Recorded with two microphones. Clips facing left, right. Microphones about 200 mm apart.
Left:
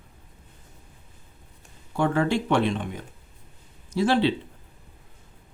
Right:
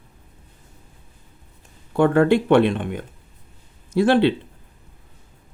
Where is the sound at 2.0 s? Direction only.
60° right (ahead or behind).